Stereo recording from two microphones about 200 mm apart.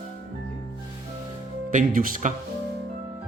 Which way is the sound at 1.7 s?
40° right (ahead or behind).